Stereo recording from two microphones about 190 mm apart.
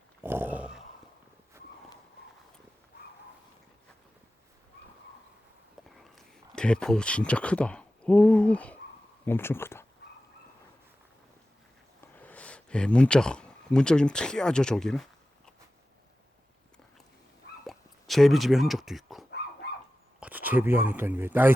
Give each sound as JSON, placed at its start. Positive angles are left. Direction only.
{"t": 0.2, "sound": "a sound", "side_deg": -10}
{"t": 6.0, "sound": "speech", "side_deg": 0}
{"t": 12.1, "sound": "speech", "side_deg": 10}
{"t": 17.7, "sound": "speech", "side_deg": 0}